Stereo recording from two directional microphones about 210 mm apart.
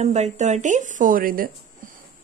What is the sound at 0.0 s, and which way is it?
A woman's voice, 35° right (ahead or behind).